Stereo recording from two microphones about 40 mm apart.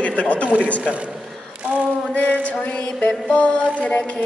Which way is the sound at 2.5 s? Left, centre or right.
Left.